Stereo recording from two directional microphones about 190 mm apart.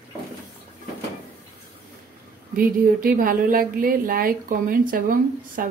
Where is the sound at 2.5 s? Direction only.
50° right (ahead or behind).